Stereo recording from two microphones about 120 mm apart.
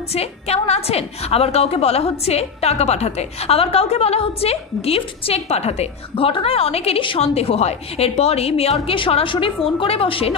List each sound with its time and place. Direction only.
0.1 s a woman's voice: 60° left (ahead or behind)